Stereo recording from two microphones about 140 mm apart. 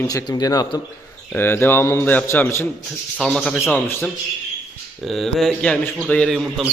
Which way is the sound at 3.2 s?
5° left (ahead or behind).